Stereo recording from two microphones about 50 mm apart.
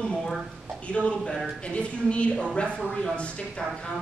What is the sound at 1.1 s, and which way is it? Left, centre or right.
Speech, centre.